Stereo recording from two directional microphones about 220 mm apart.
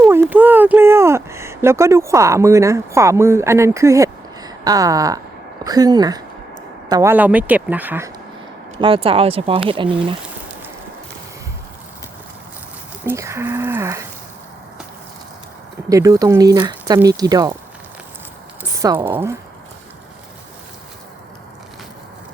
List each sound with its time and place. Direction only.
0.1 s speech: 10° right (ahead or behind)
8.8 s speech: 25° right (ahead or behind)
13.1 s speech: 10° right (ahead or behind)
15.9 s speech: 15° right (ahead or behind)
18.6 s speech: 10° right (ahead or behind)